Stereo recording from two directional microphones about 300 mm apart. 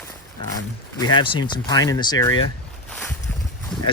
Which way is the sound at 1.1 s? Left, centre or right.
Centre.